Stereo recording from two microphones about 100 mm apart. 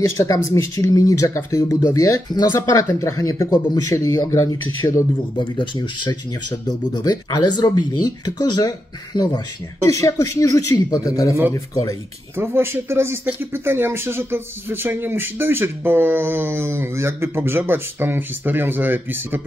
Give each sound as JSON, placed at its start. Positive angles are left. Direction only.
{"t": 0.0, "sound": "speech", "side_deg": 30}
{"t": 5.4, "sound": "speech", "side_deg": 50}
{"t": 12.4, "sound": "speech", "side_deg": -25}